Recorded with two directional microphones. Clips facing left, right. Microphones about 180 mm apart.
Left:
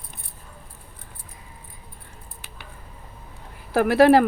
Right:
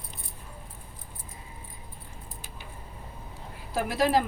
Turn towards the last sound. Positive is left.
turn(degrees=65)  # may be behind; listen again after turning